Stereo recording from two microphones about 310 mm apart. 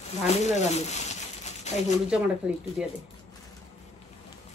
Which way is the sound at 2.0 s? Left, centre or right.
Centre.